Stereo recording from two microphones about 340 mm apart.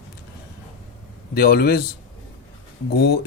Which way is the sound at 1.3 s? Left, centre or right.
Left.